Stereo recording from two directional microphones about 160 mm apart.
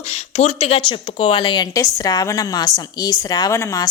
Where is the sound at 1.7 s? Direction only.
20° left (ahead or behind).